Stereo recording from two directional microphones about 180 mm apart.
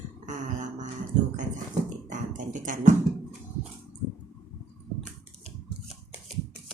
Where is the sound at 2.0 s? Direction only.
45° right (ahead or behind).